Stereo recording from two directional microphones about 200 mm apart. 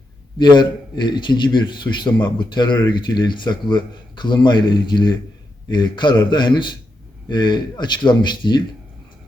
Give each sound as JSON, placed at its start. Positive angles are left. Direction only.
{"t": 0.3, "sound": "a man's voice", "side_deg": 20}